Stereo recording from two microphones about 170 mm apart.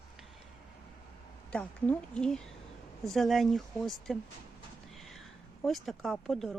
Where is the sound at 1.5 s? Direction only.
10° left (ahead or behind).